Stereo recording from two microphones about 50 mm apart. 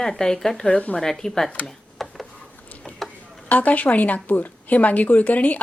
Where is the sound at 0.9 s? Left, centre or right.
Centre.